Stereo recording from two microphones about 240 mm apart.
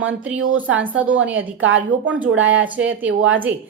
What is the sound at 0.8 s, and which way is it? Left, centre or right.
A woman's voice, centre.